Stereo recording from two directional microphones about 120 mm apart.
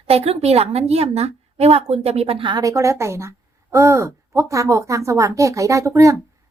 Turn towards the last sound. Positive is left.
turn(degrees=-25)  # may be behind; listen again after turning